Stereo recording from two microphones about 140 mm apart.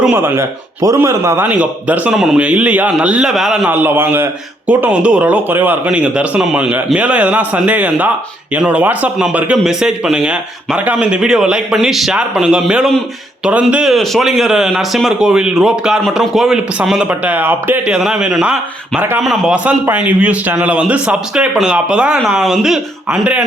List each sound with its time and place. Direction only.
0.0 s a man's voice: 15° right (ahead or behind)
3.7 s a man's voice: 15° right (ahead or behind)
19.2 s a man's voice: centre (ahead or behind)